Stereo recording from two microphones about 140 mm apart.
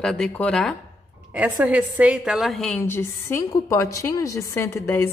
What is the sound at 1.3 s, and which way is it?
A woman's voice, 10° right (ahead or behind).